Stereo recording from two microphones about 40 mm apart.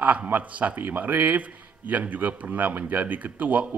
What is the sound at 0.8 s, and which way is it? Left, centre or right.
A man's voice, right.